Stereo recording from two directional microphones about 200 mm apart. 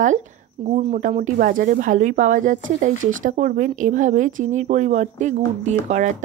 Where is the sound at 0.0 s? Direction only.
35° right (ahead or behind).